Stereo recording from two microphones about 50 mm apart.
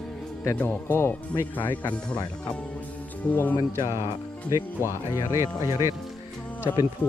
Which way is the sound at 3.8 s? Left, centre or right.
Right.